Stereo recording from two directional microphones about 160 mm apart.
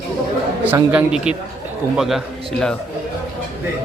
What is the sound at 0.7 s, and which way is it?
A man's voice, 10° right (ahead or behind).